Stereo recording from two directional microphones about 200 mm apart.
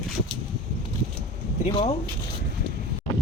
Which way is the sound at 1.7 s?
25° left (ahead or behind).